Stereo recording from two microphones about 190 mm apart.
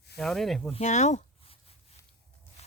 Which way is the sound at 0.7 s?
40° left (ahead or behind).